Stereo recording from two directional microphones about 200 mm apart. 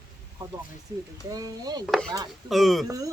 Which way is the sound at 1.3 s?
20° right (ahead or behind).